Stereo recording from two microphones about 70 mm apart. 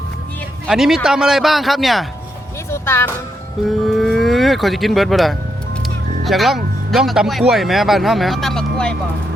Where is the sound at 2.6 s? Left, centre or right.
Left.